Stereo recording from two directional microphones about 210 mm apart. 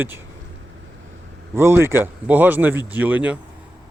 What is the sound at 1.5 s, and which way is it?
Speech, 10° right (ahead or behind).